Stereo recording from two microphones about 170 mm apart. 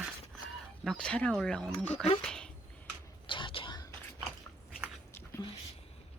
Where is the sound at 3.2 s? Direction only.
30° left (ahead or behind).